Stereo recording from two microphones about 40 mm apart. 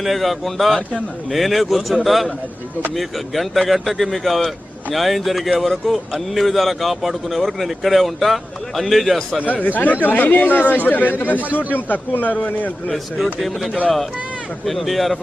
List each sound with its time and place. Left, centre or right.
0.0 s speech: centre
9.5 s speech: left
12.9 s speech: centre